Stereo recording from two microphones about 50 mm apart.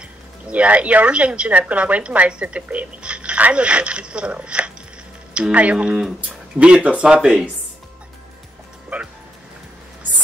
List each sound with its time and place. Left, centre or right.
0.5 s speech: right